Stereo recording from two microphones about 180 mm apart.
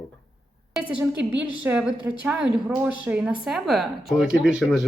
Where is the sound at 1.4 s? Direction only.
5° right (ahead or behind).